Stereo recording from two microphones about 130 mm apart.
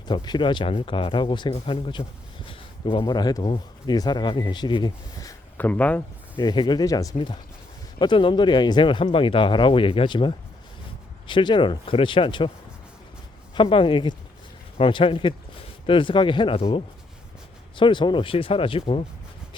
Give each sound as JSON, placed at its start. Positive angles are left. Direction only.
{"t": 0.1, "sound": "speech", "side_deg": 35}
{"t": 2.5, "sound": "a sound", "side_deg": 40}
{"t": 3.0, "sound": "speech", "side_deg": 30}
{"t": 5.5, "sound": "speech", "side_deg": 15}
{"t": 6.4, "sound": "speech", "side_deg": 35}
{"t": 13.6, "sound": "speech", "side_deg": 40}